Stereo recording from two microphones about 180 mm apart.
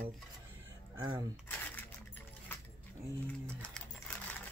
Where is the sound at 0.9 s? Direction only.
25° right (ahead or behind).